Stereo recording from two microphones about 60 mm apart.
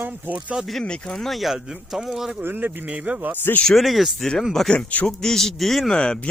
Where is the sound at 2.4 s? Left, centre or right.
Right.